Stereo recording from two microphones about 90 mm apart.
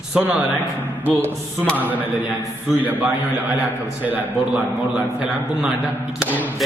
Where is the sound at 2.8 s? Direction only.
20° right (ahead or behind).